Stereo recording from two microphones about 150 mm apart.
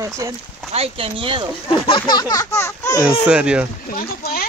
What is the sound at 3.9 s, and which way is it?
Speech, 75° left (ahead or behind).